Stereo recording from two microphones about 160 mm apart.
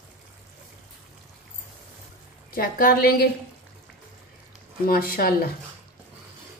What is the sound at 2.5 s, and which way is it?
Speech, 65° left (ahead or behind).